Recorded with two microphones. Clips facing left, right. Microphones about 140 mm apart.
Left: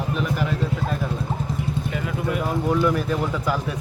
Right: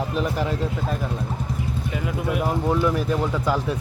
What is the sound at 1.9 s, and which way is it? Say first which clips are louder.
Speech: right 3 dB; 20° right (ahead or behind).